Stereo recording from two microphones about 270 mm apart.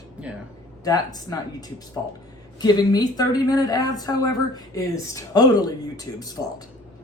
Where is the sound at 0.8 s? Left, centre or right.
Centre.